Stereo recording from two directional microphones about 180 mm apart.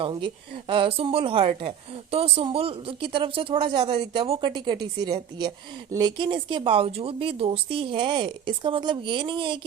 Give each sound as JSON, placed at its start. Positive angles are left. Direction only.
{"t": 0.0, "sound": "a woman's voice", "side_deg": -30}